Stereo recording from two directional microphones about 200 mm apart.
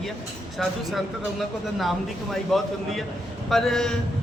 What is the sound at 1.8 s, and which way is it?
Speech, centre (ahead or behind).